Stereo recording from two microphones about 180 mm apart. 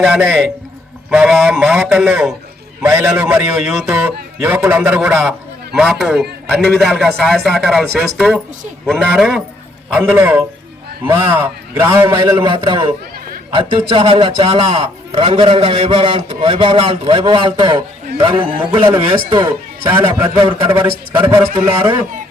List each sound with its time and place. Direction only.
0.0 s a man's voice: centre (ahead or behind); by 18.8 s 30° right (ahead or behind)
18.8 s a man's voice: 15° right (ahead or behind)